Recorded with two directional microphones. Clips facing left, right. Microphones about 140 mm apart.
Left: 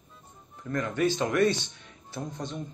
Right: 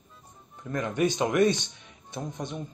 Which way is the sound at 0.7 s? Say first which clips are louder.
Even; 20° right (ahead or behind).